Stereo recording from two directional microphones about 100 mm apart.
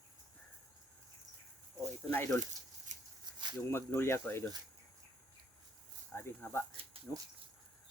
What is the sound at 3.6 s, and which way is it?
Speech, 25° left (ahead or behind).